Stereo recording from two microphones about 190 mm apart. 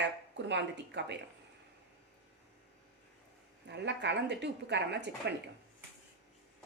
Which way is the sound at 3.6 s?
65° right (ahead or behind).